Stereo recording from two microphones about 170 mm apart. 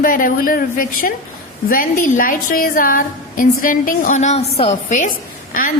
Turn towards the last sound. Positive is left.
turn(degrees=50)  # may be behind; listen again after turning